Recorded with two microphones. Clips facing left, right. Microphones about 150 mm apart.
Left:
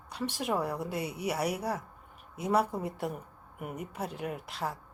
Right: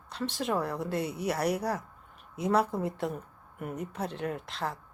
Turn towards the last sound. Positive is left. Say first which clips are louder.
# right 1 dB
turn(degrees=10)  # may be behind; listen again after turning